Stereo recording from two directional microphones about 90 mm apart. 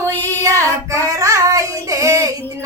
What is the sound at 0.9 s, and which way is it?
Female singing, 35° right (ahead or behind).